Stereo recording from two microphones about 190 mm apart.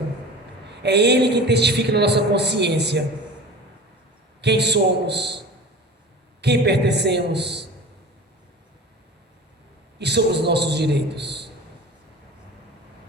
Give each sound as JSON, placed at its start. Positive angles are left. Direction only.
{"t": 0.7, "sound": "a man's voice", "side_deg": -60}
{"t": 4.4, "sound": "a man's voice", "side_deg": -60}
{"t": 6.4, "sound": "a man's voice", "side_deg": -60}
{"t": 10.0, "sound": "a man's voice", "side_deg": -60}